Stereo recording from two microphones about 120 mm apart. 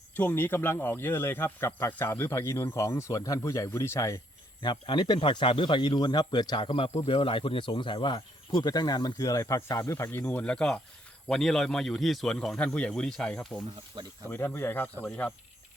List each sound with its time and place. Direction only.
0.2 s speech: 15° left (ahead or behind)
4.6 s speech: 40° left (ahead or behind); by 13.5 s 5° left (ahead or behind)
14.3 s speech: 20° left (ahead or behind)